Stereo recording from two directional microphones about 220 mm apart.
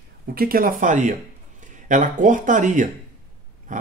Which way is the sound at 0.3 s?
40° right (ahead or behind).